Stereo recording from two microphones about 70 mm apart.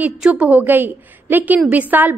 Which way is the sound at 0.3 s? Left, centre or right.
Right.